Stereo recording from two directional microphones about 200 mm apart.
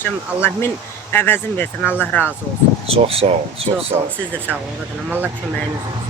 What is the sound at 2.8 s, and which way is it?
Speech, 30° right (ahead or behind).